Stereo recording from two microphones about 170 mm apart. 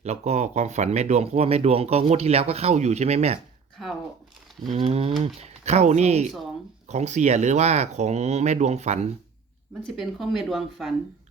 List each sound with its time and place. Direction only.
0.0 s speech: 40° right (ahead or behind)
4.7 s speech: 40° right (ahead or behind)
9.9 s speech: centre (ahead or behind)